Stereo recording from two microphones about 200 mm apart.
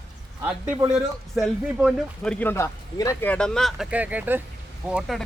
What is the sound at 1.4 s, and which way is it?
Speech, centre (ahead or behind).